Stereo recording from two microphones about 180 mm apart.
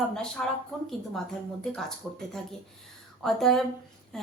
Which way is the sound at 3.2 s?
Centre (ahead or behind).